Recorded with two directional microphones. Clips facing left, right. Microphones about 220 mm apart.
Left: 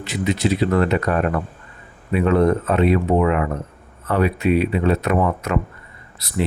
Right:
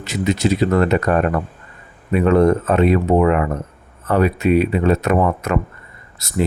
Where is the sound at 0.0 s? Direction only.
45° right (ahead or behind).